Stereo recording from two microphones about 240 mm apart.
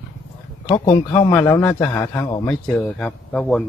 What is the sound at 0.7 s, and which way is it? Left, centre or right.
A man's voice, centre.